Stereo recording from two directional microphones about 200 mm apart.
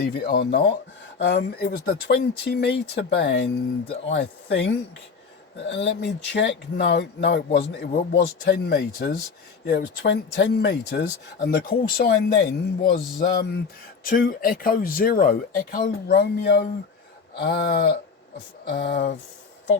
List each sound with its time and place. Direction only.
0.1 s speech: 50° left (ahead or behind)